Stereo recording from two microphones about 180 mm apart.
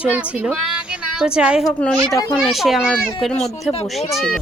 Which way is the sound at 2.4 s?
Centre (ahead or behind).